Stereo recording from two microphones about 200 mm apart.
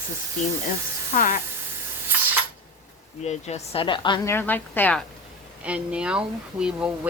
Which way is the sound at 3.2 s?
35° left (ahead or behind).